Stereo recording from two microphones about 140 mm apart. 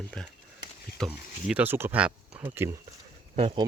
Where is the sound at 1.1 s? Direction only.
10° right (ahead or behind).